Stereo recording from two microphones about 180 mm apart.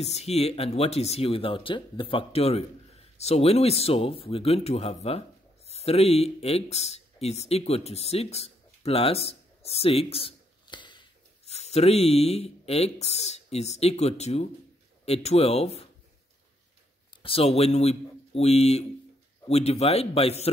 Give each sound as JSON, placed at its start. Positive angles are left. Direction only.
{"t": 0.0, "sound": "speech", "side_deg": 35}
{"t": 17.2, "sound": "speech", "side_deg": 30}